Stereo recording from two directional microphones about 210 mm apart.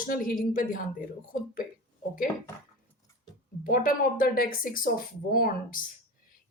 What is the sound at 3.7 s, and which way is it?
Speech, 40° left (ahead or behind).